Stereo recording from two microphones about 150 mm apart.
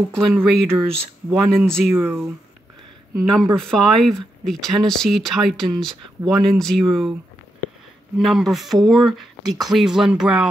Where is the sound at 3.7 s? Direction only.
5° left (ahead or behind).